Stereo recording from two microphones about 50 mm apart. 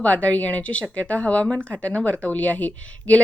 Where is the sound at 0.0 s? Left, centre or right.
Left.